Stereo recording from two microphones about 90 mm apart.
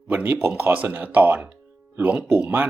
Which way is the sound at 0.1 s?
20° right (ahead or behind).